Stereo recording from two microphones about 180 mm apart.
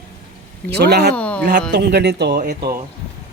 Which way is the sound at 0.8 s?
65° right (ahead or behind).